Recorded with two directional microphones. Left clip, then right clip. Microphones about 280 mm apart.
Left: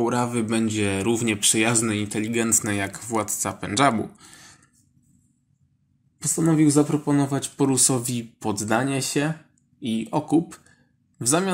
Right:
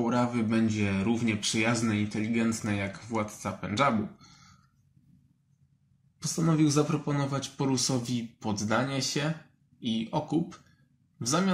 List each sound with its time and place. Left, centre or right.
0.0 s speech: left
6.1 s speech: left